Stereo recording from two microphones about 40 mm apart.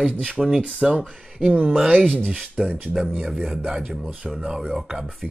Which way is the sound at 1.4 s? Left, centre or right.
Right.